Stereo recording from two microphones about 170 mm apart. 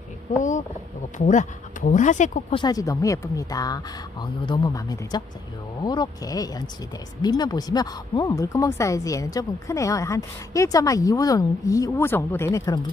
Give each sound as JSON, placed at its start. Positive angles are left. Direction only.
{"t": 0.4, "sound": "speech", "side_deg": 45}
{"t": 2.5, "sound": "speech", "side_deg": 25}